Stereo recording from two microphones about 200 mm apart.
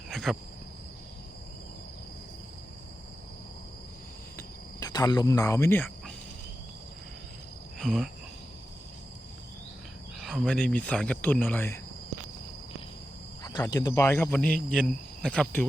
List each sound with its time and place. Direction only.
0.1 s cricket: centre (ahead or behind)
4.4 s cricket: 20° left (ahead or behind)
7.8 s cricket: centre (ahead or behind)
10.2 s speech: centre (ahead or behind)
13.4 s speech: 20° left (ahead or behind)